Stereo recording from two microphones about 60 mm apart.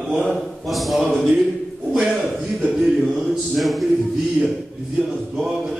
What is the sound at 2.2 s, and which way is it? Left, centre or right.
Speech, centre.